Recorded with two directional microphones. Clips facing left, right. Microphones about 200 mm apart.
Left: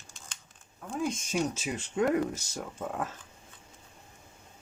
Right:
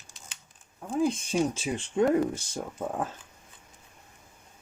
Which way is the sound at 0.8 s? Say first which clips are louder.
Right 6 dB; 30° right (ahead or behind).